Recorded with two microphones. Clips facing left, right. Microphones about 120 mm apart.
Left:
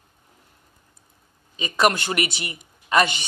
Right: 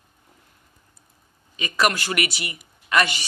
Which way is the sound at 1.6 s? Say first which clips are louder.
Left 2 dB; 30° left (ahead or behind).